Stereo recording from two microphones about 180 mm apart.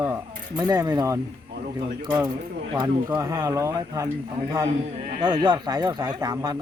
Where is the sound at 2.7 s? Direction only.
20° right (ahead or behind).